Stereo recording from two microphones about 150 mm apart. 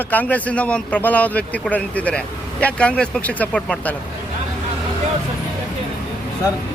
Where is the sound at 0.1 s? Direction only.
10° left (ahead or behind).